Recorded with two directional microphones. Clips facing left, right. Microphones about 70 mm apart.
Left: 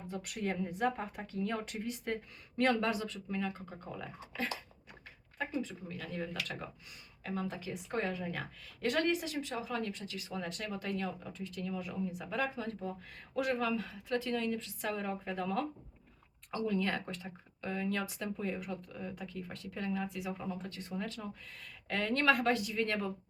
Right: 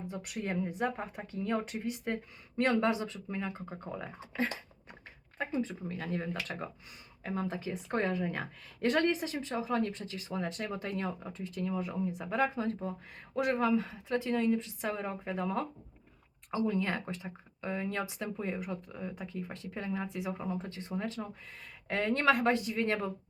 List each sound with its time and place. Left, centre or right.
0.1 s speech: centre